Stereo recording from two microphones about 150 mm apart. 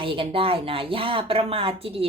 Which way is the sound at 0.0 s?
35° right (ahead or behind).